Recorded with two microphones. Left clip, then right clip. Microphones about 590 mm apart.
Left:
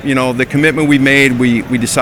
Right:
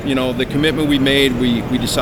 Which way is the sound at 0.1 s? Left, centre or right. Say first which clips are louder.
Left 5 dB; left.